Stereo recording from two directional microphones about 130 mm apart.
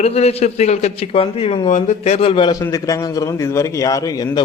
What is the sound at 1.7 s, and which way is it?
Speech, 60° left (ahead or behind).